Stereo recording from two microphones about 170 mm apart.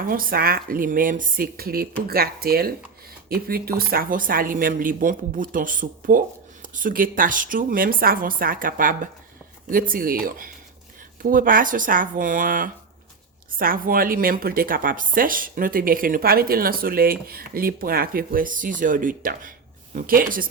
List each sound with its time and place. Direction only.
0.0 s speech: 55° right (ahead or behind)